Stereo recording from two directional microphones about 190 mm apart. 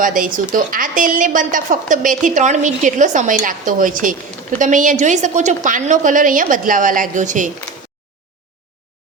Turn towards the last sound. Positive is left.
turn(degrees=-40)  # may be behind; listen again after turning